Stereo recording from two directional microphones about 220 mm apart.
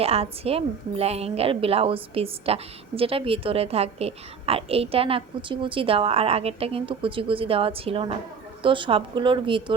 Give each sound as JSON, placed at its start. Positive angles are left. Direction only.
{"t": 0.0, "sound": "a woman's voice", "side_deg": -25}